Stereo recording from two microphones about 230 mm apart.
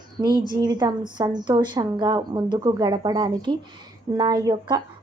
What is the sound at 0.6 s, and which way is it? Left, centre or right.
A woman's voice, centre.